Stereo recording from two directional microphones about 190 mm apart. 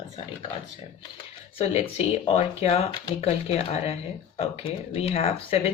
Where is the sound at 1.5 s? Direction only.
35° left (ahead or behind).